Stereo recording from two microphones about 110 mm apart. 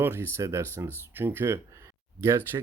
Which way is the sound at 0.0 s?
20° right (ahead or behind).